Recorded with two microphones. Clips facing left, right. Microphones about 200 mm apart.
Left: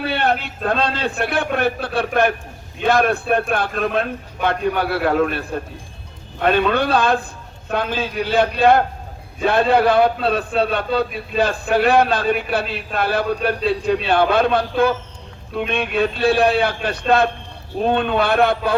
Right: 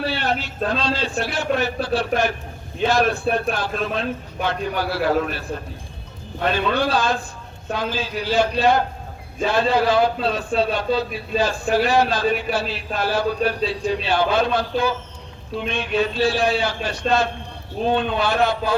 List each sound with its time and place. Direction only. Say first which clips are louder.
0.0 s a man's voice: left 3 dB; 55° left (ahead or behind)
6.4 s a man's voice: left 4 dB; 55° left (ahead or behind)